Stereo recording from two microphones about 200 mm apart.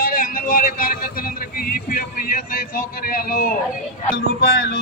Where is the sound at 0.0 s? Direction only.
45° left (ahead or behind).